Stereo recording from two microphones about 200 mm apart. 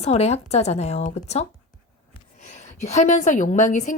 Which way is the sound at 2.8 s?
35° left (ahead or behind).